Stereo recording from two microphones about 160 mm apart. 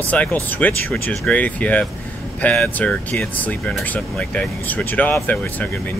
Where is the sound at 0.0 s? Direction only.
10° left (ahead or behind).